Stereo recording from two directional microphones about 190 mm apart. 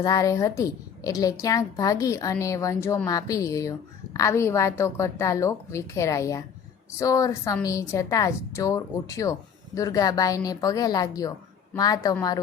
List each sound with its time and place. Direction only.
0.0 s a woman's voice: 20° left (ahead or behind)